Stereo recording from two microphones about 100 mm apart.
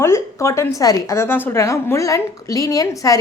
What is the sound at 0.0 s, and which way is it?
A woman's voice, 30° left (ahead or behind).